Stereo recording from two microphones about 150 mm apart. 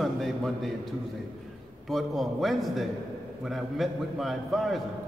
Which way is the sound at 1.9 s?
Centre (ahead or behind).